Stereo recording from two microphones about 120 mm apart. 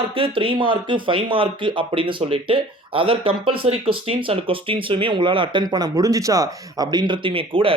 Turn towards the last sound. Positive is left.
turn(degrees=-50)  # may be behind; listen again after turning